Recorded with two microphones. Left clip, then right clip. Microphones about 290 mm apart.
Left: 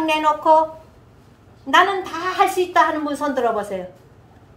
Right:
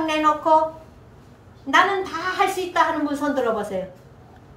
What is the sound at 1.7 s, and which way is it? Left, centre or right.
A woman's voice, left.